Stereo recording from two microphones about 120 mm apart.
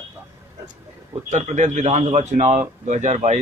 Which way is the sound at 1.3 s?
85° right.